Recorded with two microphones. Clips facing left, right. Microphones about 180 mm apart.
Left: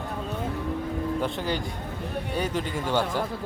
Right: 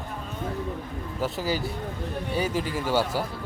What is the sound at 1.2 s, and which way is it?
Speech, 5° right (ahead or behind).